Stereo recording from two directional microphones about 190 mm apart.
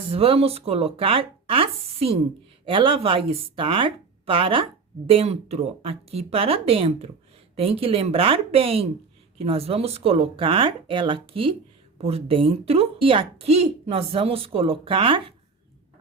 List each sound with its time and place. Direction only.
0.1 s speech: 30° right (ahead or behind)